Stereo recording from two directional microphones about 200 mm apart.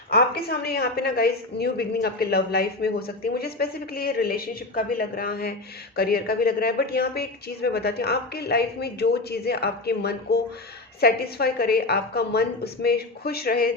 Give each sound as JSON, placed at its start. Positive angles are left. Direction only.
{"t": 0.1, "sound": "speech", "side_deg": 50}